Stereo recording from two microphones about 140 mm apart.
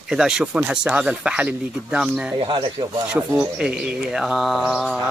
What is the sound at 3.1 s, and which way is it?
Speech, 5° right (ahead or behind).